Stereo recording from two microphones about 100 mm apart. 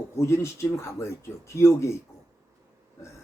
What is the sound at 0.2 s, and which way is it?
Speech, 25° left (ahead or behind).